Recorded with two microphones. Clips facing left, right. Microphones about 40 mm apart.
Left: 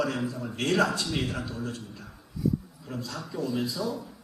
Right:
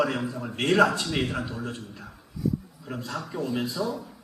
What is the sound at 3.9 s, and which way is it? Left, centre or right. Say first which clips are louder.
Speech: right 1 dB; right.